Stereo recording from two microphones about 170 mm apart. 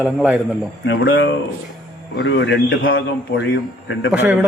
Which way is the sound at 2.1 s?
90° left.